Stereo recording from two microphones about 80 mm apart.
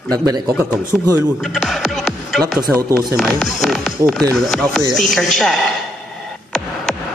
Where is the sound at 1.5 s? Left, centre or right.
Centre.